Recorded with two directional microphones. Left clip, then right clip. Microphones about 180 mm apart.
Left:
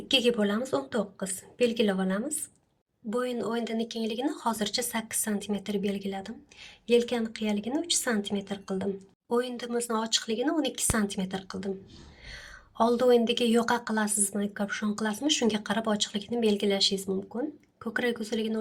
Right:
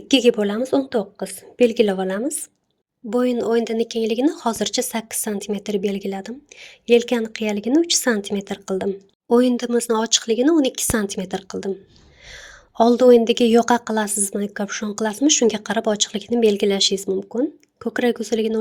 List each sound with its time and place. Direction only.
0.1 s a woman's voice: 45° right (ahead or behind)